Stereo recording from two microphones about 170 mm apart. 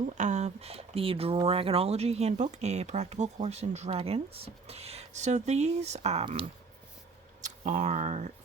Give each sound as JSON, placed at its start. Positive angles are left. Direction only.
{"t": 0.2, "sound": "speech", "side_deg": -45}
{"t": 7.6, "sound": "speech", "side_deg": -45}